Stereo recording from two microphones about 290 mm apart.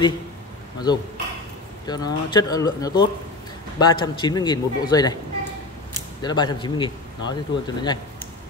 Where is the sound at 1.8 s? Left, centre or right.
Centre.